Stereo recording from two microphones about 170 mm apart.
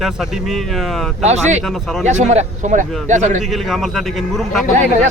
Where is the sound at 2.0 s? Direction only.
45° right (ahead or behind).